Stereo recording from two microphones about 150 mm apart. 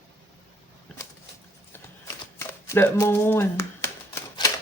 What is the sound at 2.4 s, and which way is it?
Shuffling cards, 15° left (ahead or behind).